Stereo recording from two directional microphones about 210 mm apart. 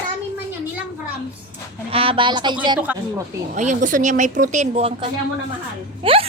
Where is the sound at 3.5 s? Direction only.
35° right (ahead or behind).